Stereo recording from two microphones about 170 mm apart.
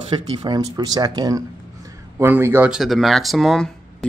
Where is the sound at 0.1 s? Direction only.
25° right (ahead or behind).